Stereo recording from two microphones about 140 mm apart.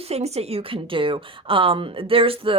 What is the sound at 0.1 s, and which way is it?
A woman's voice, 50° right (ahead or behind).